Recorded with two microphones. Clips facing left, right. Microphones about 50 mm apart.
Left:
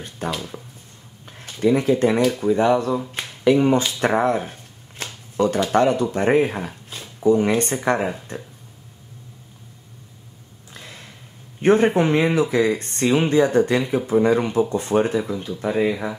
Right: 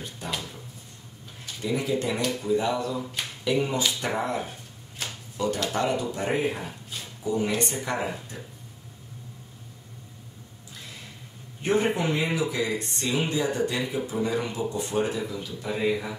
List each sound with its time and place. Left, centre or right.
0.2 s speech: left
1.4 s speech: left
4.0 s shuffling cards: left
5.7 s speech: left
11.6 s speech: left